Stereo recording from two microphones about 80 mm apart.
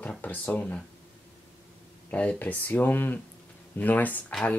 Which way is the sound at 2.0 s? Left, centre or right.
Centre.